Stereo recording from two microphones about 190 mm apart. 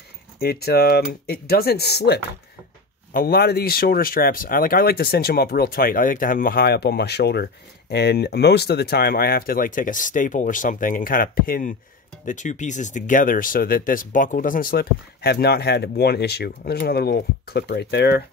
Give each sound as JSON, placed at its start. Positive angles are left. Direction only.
{"t": 0.4, "sound": "speech", "side_deg": 55}